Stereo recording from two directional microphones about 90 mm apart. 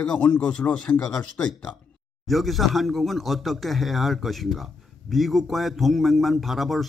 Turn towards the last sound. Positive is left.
turn(degrees=0)  # may be behind; listen again after turning